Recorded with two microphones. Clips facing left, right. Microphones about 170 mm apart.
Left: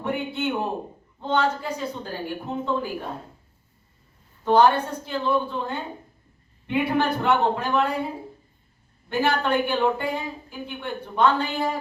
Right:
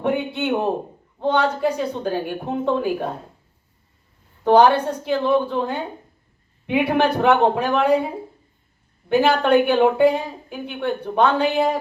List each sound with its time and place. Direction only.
0.0 s a man's voice: 65° right (ahead or behind)
4.4 s a woman's voice: 65° right (ahead or behind)
9.0 s a woman's voice: 65° right (ahead or behind)